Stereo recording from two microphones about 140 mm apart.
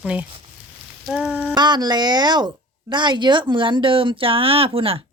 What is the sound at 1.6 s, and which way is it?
Speech, 30° right (ahead or behind).